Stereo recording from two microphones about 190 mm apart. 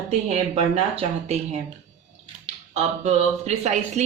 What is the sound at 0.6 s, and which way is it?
Speech, 35° right (ahead or behind).